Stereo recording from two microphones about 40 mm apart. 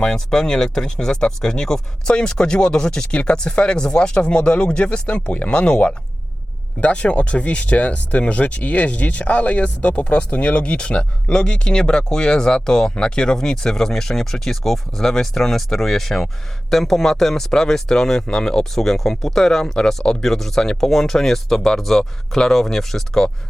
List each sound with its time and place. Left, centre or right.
0.0 s speech: centre
18.7 s speech: centre
20.6 s speech: centre
20.9 s speech: centre